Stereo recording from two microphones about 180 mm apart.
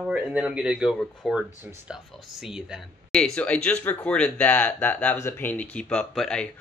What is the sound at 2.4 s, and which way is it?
Speech, 5° right (ahead or behind).